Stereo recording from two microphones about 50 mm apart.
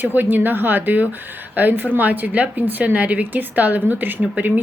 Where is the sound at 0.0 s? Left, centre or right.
Right.